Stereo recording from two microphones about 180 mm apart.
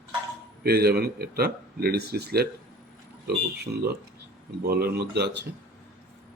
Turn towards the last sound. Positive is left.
turn(degrees=-65)  # may be behind; listen again after turning